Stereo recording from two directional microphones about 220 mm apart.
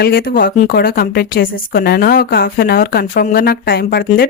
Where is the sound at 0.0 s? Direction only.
45° left (ahead or behind).